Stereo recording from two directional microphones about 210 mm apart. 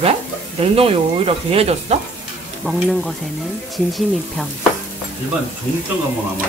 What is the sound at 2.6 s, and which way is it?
Speech, centre (ahead or behind).